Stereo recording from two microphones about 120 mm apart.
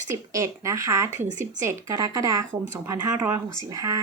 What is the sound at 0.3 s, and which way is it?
A woman's voice, 25° right (ahead or behind).